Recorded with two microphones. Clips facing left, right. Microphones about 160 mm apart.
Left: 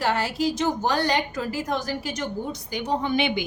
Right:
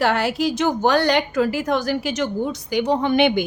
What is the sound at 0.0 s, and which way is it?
A woman's voice, 70° right (ahead or behind).